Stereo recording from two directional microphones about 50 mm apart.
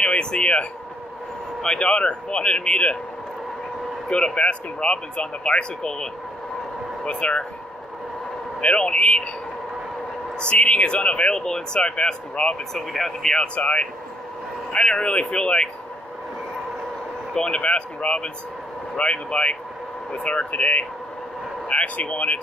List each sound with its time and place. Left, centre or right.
0.0 s speech: centre
4.1 s speech: centre
7.1 s speech: left
8.5 s speech: left
10.4 s speech: left
12.7 s speech: centre
13.6 s speech: left
17.3 s speech: centre